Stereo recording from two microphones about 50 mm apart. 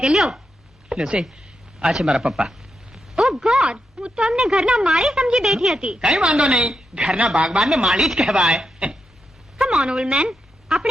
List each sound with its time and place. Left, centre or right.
0.0 s a woman's voice: centre
0.9 s a woman's voice: centre
2.5 s a sound: centre
3.4 s a woman's voice: centre
3.7 s speech: right
4.2 s a woman's voice: centre
4.6 s speech: right
4.9 s a woman's voice: centre
6.1 s a woman's voice: centre
7.4 s speech: centre
9.6 s a sound: centre
9.8 s a woman's voice: centre